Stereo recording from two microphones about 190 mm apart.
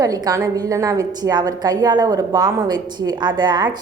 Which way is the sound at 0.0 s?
15° right (ahead or behind).